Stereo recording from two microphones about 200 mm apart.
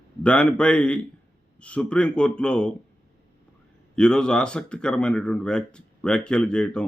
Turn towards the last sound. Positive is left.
turn(degrees=5)  # may be behind; listen again after turning